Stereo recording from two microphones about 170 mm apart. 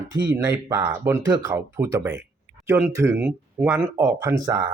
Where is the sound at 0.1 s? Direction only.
20° right (ahead or behind).